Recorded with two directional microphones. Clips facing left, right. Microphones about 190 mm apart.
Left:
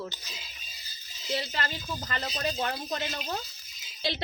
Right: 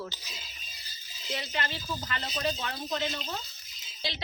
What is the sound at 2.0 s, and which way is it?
Speech, 45° left (ahead or behind).